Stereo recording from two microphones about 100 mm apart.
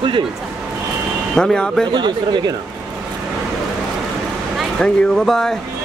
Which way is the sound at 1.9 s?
50° right (ahead or behind).